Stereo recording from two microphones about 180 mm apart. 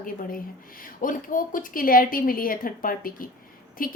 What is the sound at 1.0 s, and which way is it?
A woman's voice, 50° left (ahead or behind).